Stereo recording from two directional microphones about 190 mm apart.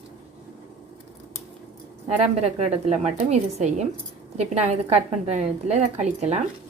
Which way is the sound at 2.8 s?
35° right (ahead or behind).